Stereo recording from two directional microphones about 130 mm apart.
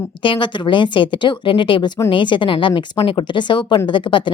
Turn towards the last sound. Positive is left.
turn(degrees=40)  # may be behind; listen again after turning